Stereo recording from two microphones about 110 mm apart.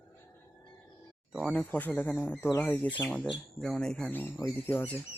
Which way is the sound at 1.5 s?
15° left (ahead or behind).